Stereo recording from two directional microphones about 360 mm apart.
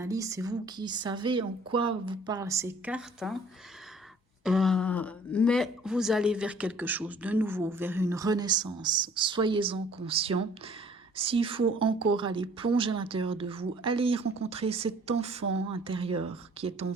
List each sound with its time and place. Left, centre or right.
0.0 s speech: centre
4.4 s speech: centre